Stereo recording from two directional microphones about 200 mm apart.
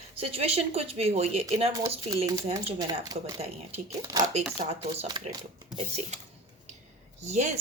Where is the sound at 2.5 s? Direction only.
20° right (ahead or behind).